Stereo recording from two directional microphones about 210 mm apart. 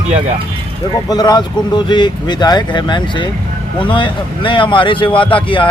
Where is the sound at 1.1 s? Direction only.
20° left (ahead or behind).